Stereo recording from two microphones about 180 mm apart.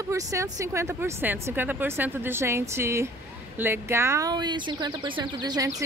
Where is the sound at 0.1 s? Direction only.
15° right (ahead or behind).